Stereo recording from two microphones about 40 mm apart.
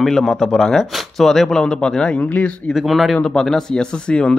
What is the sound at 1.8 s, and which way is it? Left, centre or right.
Speech, left.